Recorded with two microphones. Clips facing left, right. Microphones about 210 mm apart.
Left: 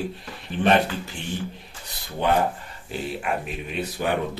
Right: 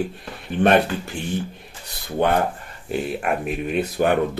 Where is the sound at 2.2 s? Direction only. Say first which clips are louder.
Right 2 dB; 55° right (ahead or behind).